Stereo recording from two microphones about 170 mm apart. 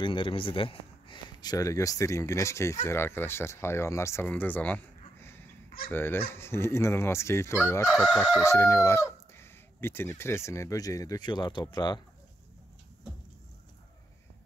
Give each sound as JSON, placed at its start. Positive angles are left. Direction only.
{"t": 0.0, "sound": "speech", "side_deg": 30}
{"t": 5.2, "sound": "a sound", "side_deg": 15}
{"t": 5.9, "sound": "speech", "side_deg": 15}
{"t": 7.9, "sound": "chicken", "side_deg": -5}
{"t": 8.5, "sound": "speech", "side_deg": 15}